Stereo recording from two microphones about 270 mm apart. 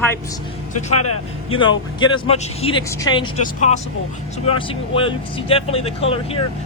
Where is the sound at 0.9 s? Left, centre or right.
Left.